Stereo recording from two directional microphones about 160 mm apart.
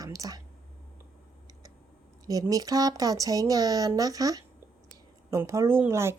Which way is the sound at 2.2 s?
20° right (ahead or behind).